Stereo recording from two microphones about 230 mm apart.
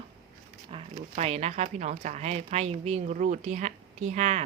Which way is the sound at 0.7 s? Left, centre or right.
Right.